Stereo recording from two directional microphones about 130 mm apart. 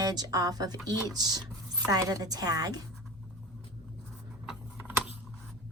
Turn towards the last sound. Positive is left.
turn(degrees=-15)  # may be behind; listen again after turning